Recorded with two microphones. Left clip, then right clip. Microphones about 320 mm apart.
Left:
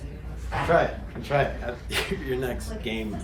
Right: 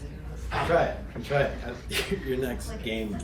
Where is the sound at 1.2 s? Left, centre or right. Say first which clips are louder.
Left 2 dB; centre.